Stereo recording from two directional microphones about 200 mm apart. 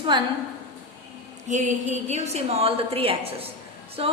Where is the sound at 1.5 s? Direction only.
35° right (ahead or behind).